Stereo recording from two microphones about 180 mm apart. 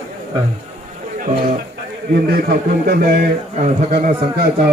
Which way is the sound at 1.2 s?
45° right (ahead or behind).